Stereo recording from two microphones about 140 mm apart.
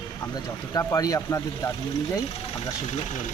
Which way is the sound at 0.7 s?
25° left (ahead or behind).